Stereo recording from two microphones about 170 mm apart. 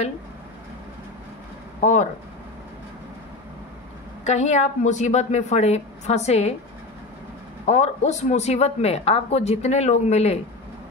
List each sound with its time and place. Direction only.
1.8 s speech: 45° left (ahead or behind)
4.2 s speech: 40° left (ahead or behind)
7.6 s speech: 45° left (ahead or behind)